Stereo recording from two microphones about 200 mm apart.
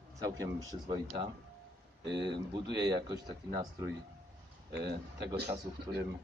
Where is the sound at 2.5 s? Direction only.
20° right (ahead or behind).